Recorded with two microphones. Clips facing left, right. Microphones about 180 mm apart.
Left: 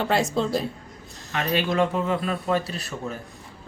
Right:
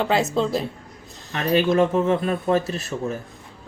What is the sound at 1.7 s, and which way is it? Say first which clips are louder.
Speech: right 4 dB; 25° right (ahead or behind).